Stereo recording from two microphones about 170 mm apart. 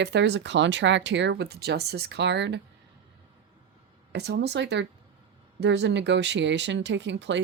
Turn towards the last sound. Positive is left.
turn(degrees=-90)